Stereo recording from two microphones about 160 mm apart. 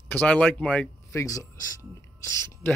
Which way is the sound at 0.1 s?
10° left (ahead or behind).